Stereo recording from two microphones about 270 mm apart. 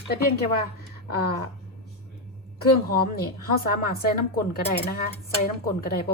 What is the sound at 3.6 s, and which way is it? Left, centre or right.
Speech, left.